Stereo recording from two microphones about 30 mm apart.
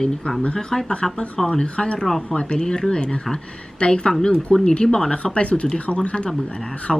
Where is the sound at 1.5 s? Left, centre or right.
Left.